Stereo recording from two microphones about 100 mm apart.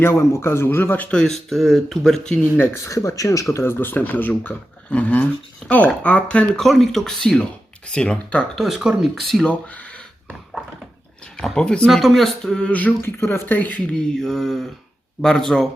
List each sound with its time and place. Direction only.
0.0 s speech: 25° left (ahead or behind)
1.1 s speech: 5° left (ahead or behind)
2.6 s speech: 30° left (ahead or behind); by 8.4 s 10° left (ahead or behind)
8.5 s speech: centre (ahead or behind)
9.5 s speech: 15° left (ahead or behind)
11.3 s speech: 5° left (ahead or behind)
11.9 s speech: centre (ahead or behind); by 13.8 s 20° left (ahead or behind)
13.9 s speech: 5° left (ahead or behind)